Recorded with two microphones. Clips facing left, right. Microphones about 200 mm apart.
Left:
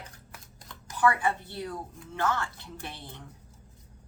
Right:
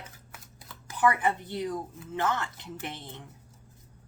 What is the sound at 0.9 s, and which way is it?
A woman's voice, 20° right (ahead or behind).